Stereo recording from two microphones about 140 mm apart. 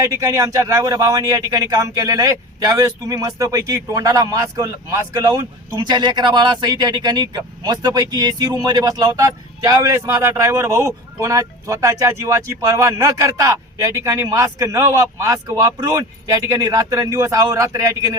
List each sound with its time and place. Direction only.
0.0 s a man's voice: 25° right (ahead or behind)